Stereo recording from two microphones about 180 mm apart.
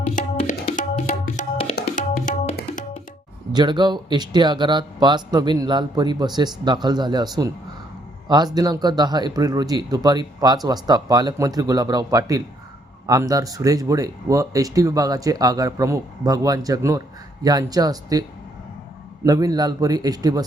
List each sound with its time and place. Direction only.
0.4 s tabla: 50° left (ahead or behind)
0.9 s tabla: 40° left (ahead or behind)
3.5 s speech: 25° right (ahead or behind)
8.5 s speech: 20° right (ahead or behind)